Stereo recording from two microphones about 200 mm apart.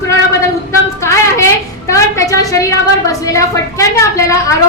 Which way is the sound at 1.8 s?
15° left (ahead or behind).